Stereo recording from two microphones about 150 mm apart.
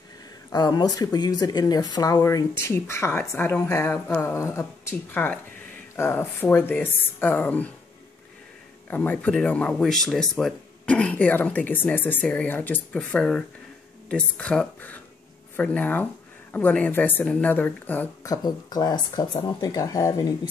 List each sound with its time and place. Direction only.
0.5 s speech: 30° left (ahead or behind); by 7.7 s 10° left (ahead or behind)
8.8 s speech: 10° left (ahead or behind)
18.2 s speech: 25° left (ahead or behind)